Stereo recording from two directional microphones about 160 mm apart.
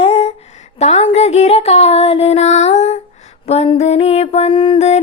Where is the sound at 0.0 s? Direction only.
40° left (ahead or behind).